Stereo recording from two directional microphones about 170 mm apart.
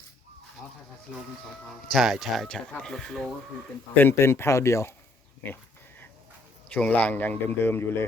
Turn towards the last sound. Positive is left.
turn(degrees=15)  # may be behind; listen again after turning